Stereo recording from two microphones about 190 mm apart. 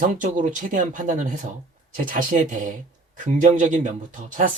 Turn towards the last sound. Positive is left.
turn(degrees=-45)  # may be behind; listen again after turning